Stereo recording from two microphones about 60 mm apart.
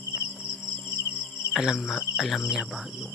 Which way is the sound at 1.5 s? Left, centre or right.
Centre.